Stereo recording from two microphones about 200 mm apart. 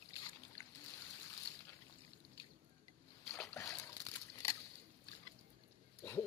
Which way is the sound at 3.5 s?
15° left (ahead or behind).